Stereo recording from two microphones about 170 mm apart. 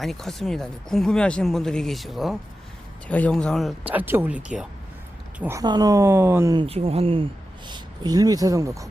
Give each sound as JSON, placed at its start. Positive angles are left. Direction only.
{"t": 0.0, "sound": "speech", "side_deg": 0}
{"t": 6.6, "sound": "speech", "side_deg": -35}
{"t": 7.7, "sound": "speech", "side_deg": -25}